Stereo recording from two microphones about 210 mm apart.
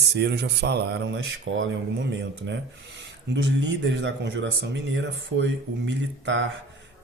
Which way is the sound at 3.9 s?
55° right (ahead or behind).